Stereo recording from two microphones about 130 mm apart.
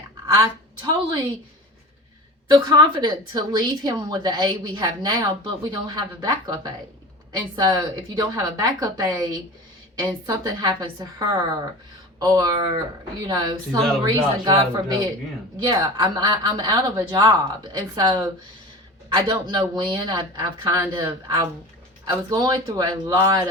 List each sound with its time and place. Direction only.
0.3 s a woman's voice: 30° right (ahead or behind)
2.5 s a woman's voice: 35° right (ahead or behind)